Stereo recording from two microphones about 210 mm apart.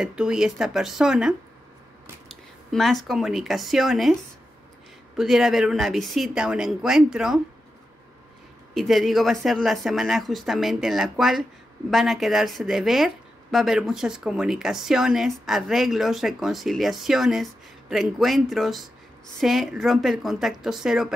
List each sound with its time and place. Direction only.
0.0 s a woman's voice: 5° right (ahead or behind)
2.7 s a woman's voice: centre (ahead or behind)
8.7 s a woman's voice: centre (ahead or behind)